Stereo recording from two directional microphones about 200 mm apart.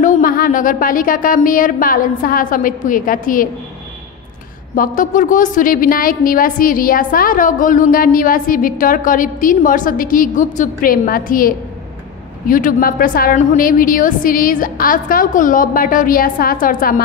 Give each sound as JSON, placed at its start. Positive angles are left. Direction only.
{"t": 0.0, "sound": "a woman's voice", "side_deg": 45}
{"t": 4.7, "sound": "a woman's voice", "side_deg": 40}